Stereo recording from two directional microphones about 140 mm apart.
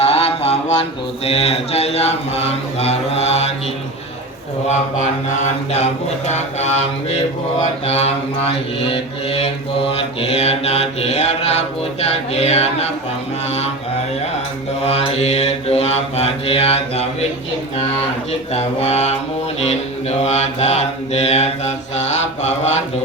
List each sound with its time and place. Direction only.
0.0 s speech: 45° left (ahead or behind)
4.7 s mantra: 55° left (ahead or behind)
14.8 s mantra: 45° left (ahead or behind)
18.5 s mantra: 50° left (ahead or behind)